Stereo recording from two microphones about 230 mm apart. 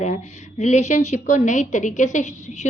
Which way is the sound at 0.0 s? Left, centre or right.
Left.